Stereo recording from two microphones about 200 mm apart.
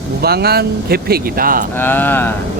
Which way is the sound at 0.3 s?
50° right (ahead or behind).